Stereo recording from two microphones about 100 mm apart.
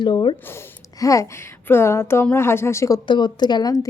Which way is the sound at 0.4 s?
25° left (ahead or behind).